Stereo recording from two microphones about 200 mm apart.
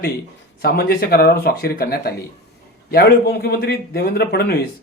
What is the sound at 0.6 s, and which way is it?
Speech, 50° left (ahead or behind).